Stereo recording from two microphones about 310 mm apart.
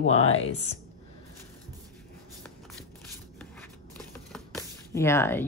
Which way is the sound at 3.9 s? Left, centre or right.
Centre.